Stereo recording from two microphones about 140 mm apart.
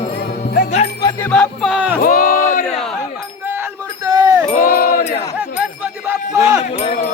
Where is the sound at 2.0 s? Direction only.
85° left.